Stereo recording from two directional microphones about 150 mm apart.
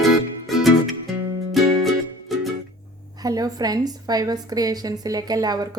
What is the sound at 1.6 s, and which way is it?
Music, centre (ahead or behind).